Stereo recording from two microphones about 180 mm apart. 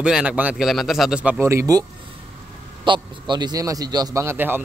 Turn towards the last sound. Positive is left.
turn(degrees=-10)  # may be behind; listen again after turning